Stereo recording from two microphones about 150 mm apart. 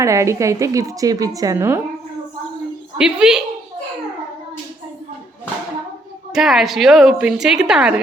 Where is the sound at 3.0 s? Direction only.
5° right (ahead or behind).